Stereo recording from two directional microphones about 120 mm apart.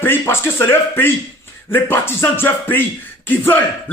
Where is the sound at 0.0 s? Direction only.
20° left (ahead or behind).